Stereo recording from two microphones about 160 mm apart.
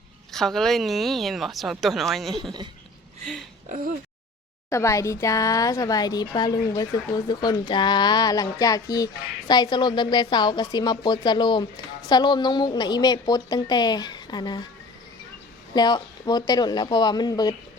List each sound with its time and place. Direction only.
0.3 s a woman's voice: 5° left (ahead or behind)
2.3 s speech: 30° right (ahead or behind)
4.7 s a woman's voice: 20° left (ahead or behind)
15.7 s a woman's voice: 25° left (ahead or behind)